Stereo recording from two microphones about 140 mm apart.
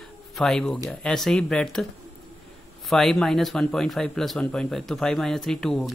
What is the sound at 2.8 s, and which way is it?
Speech, centre (ahead or behind).